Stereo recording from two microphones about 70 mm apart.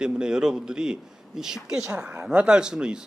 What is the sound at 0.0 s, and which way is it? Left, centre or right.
A man's voice, centre.